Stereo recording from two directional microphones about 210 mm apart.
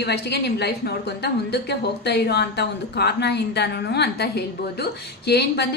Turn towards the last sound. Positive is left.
turn(degrees=50)  # may be behind; listen again after turning